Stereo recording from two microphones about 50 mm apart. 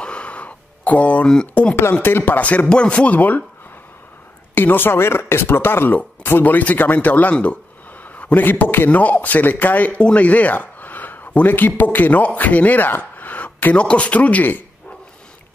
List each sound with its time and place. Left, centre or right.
0.0 s a sound: left
1.5 s speech: left
2.0 s speech: left
2.4 s speech: left
4.6 s speech: left
6.4 s speech: left
8.0 s a sound: left
8.5 s speech: left
13.7 s speech: left